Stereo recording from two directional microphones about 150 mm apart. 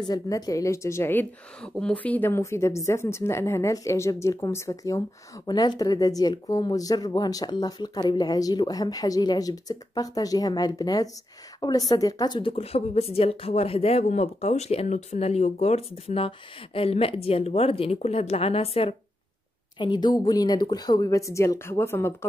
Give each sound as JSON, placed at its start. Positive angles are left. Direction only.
{"t": 0.1, "sound": "speech", "side_deg": 20}
{"t": 19.8, "sound": "speech", "side_deg": 30}